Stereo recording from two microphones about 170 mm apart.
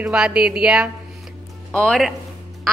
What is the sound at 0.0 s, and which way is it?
A woman's voice, 5° right (ahead or behind).